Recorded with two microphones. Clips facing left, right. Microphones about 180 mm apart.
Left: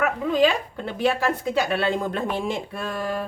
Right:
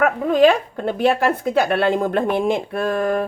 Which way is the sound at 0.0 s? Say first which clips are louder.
Right 6 dB; 55° right (ahead or behind).